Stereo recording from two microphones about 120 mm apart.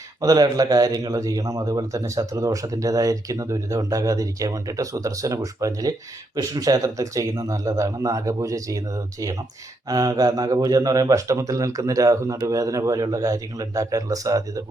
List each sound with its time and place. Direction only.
0.2 s a man's voice: 30° right (ahead or behind)
9.9 s a man's voice: 30° right (ahead or behind)